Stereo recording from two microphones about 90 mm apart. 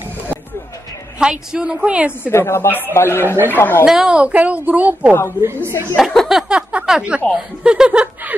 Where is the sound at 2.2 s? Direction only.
25° left (ahead or behind).